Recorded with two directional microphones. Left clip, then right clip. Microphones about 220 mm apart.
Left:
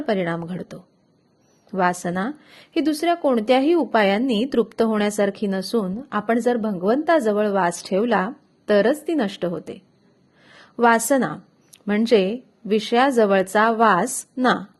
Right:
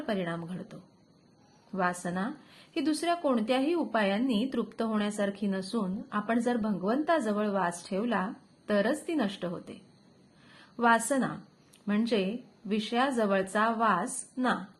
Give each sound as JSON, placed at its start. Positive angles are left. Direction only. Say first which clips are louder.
{"t": 0.0, "sound": "a woman's voice", "louder": "left 10 dB", "side_deg": 40}